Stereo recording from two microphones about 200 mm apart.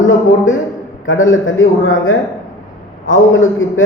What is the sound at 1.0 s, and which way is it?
A man's voice, 80° left.